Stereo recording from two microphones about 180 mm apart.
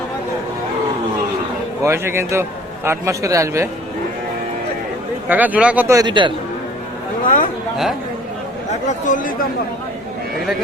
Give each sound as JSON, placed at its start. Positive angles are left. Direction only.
{"t": 1.8, "sound": "a man's voice", "side_deg": -15}
{"t": 5.3, "sound": "a man's voice", "side_deg": -10}
{"t": 7.3, "sound": "speech", "side_deg": 50}
{"t": 8.9, "sound": "speech", "side_deg": 45}